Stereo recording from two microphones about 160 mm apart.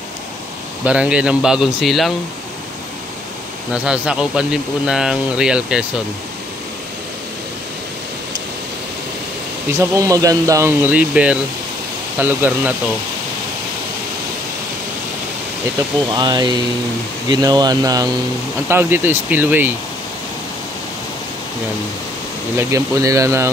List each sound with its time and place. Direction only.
0.8 s speech: 5° right (ahead or behind)
3.7 s speech: 5° right (ahead or behind)
9.8 s speech: 20° right (ahead or behind)
16.1 s speech: 25° right (ahead or behind)
18.7 s speech: 15° right (ahead or behind)
22.6 s speech: 20° right (ahead or behind)